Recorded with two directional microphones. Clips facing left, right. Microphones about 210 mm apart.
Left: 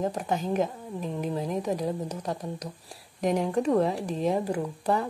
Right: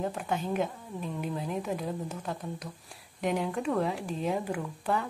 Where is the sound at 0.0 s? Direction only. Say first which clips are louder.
Left 3 dB; 40° left (ahead or behind).